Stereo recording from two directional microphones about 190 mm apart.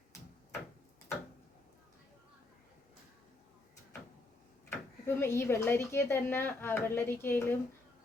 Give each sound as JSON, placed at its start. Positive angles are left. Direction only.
{"t": 4.7, "sound": "speech", "side_deg": 15}